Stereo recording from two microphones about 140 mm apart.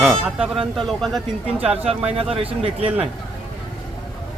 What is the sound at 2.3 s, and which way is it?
Speech, 40° right (ahead or behind).